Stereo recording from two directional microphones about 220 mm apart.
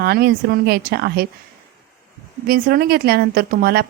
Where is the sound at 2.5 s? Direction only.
40° right (ahead or behind).